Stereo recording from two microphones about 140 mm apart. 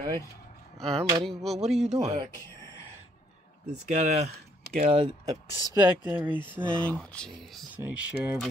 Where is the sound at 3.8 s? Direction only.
55° right (ahead or behind).